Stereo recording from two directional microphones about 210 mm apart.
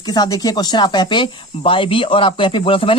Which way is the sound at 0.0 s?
20° left (ahead or behind).